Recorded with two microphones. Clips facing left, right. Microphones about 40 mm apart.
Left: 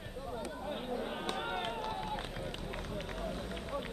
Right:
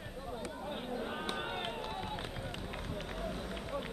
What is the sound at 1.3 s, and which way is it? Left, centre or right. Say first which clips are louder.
Run: left 2 dB; centre.